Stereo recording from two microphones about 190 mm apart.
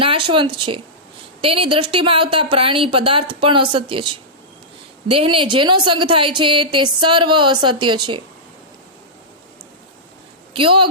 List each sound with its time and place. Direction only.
0.3 s a woman's voice: 25° right (ahead or behind)
10.5 s a woman's voice: 25° right (ahead or behind)